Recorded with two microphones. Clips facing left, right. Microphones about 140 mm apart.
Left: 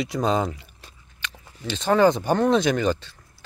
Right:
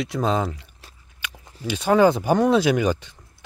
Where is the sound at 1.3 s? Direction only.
10° right (ahead or behind).